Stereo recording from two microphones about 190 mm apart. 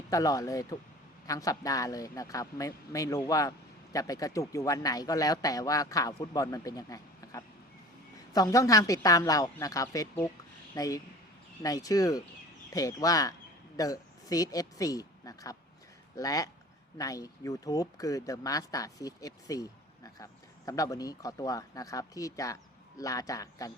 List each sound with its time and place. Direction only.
0.1 s speech: 20° left (ahead or behind)